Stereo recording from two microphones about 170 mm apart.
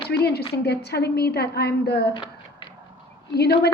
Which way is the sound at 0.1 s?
75° left (ahead or behind).